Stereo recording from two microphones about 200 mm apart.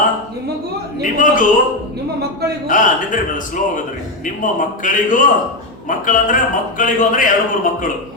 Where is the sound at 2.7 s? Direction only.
40° left (ahead or behind).